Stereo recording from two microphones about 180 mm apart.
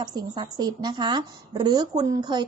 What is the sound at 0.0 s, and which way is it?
Speech, 20° right (ahead or behind).